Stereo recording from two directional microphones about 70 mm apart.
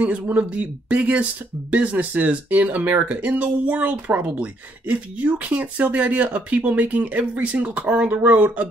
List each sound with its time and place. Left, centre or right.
0.0 s speech: right